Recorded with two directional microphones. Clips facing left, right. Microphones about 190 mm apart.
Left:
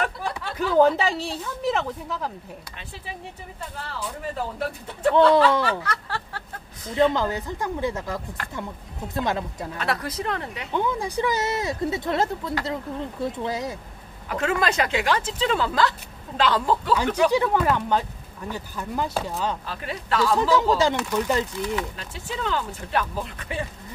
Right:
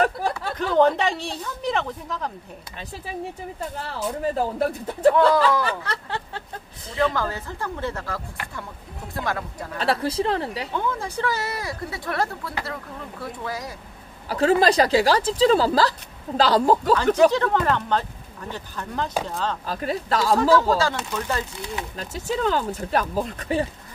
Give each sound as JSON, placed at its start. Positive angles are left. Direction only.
{"t": 0.0, "sound": "a sound", "side_deg": -40}
{"t": 0.6, "sound": "speech", "side_deg": 5}
{"t": 4.0, "sound": "speech", "side_deg": -40}
{"t": 5.1, "sound": "speech", "side_deg": 25}
{"t": 5.9, "sound": "speech", "side_deg": -20}
{"t": 7.0, "sound": "speech", "side_deg": 20}
{"t": 9.8, "sound": "speech", "side_deg": -30}
{"t": 10.7, "sound": "speech", "side_deg": 15}
{"t": 14.3, "sound": "speech", "side_deg": -35}
{"t": 17.3, "sound": "speech", "side_deg": 10}
{"t": 19.6, "sound": "speech", "side_deg": -40}
{"t": 20.3, "sound": "speech", "side_deg": 20}
{"t": 21.9, "sound": "speech", "side_deg": -40}